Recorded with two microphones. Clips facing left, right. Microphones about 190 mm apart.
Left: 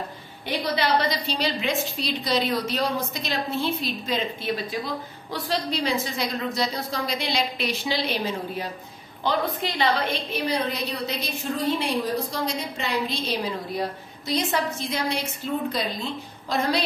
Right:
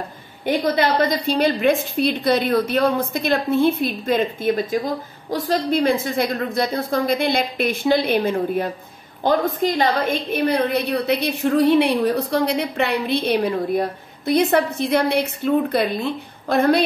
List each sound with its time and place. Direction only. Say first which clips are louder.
0.5 s a woman's voice: right 6 dB; 50° right (ahead or behind)